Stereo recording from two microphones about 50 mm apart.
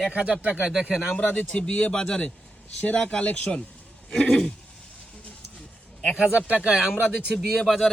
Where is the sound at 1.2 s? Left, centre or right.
Left; by 4.5 s centre.